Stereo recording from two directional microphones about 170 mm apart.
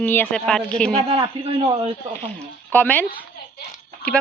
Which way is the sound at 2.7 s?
10° left (ahead or behind).